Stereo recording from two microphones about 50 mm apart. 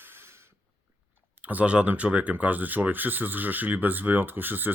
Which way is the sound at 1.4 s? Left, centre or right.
Right.